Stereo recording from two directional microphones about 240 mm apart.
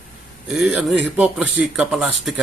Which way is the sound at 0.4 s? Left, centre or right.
Centre.